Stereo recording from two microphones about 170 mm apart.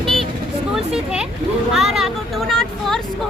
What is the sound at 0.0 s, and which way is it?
Vehicle, centre (ahead or behind).